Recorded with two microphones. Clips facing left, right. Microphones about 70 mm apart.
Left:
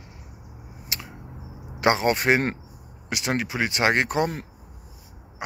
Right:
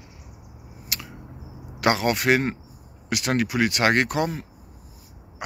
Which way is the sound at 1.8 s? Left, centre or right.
Left.